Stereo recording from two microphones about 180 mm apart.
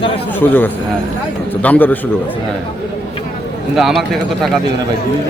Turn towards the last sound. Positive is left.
turn(degrees=0)  # may be behind; listen again after turning